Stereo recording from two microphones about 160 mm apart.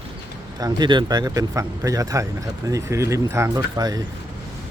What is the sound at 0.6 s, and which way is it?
Speech, 30° right (ahead or behind).